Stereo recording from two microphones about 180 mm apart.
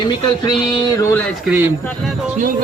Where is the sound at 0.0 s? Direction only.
25° left (ahead or behind).